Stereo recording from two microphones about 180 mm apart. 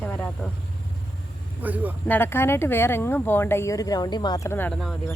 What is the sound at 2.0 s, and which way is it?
Speech, 10° left (ahead or behind).